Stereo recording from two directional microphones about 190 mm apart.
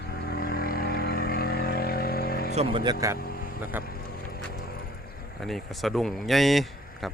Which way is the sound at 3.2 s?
50° left (ahead or behind).